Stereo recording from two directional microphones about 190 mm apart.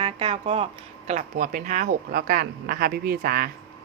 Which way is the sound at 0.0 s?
30° right (ahead or behind).